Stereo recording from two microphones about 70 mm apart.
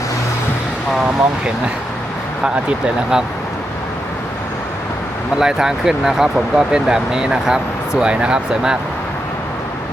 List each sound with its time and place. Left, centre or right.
1.0 s speech: centre
5.4 s speech: centre